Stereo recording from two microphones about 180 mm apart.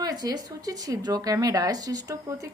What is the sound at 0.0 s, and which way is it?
Speech, 20° right (ahead or behind).